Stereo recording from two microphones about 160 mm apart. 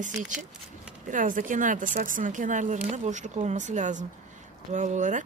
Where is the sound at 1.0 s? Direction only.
55° right (ahead or behind).